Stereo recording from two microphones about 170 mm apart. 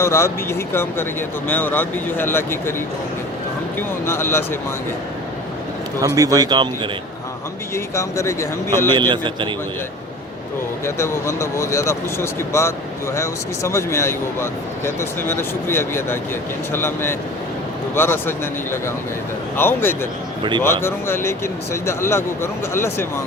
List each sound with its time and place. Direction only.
0.0 s speech: 15° left (ahead or behind)
3.8 s speech: 15° left (ahead or behind)
6.1 s a man's voice: 20° right (ahead or behind)
7.9 s speech: 15° left (ahead or behind)
9.0 s a man's voice: 30° right (ahead or behind)
10.8 s speech: 15° left (ahead or behind)